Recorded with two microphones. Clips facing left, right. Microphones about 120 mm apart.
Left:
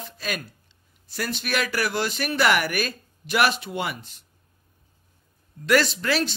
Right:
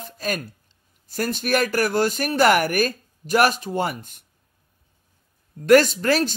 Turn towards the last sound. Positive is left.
turn(degrees=-45)  # may be behind; listen again after turning